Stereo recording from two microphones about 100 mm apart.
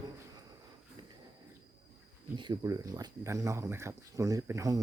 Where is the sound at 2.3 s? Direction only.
50° right (ahead or behind).